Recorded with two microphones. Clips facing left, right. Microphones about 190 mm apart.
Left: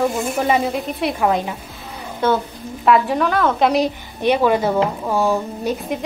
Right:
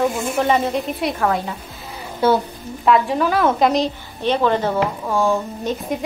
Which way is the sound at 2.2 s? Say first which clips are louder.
Right 2 dB; 10° right (ahead or behind).